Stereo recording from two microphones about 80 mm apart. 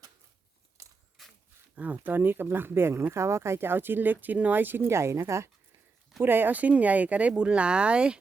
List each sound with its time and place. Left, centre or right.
1.2 s a sound: centre
1.7 s speech: right
6.2 s speech: right